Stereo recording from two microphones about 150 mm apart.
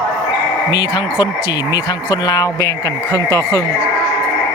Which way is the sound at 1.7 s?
25° left (ahead or behind).